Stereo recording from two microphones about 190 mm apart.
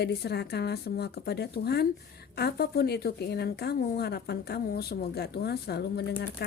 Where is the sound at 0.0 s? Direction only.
60° left (ahead or behind).